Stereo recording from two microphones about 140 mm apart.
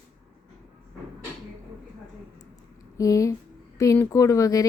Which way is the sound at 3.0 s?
25° left (ahead or behind).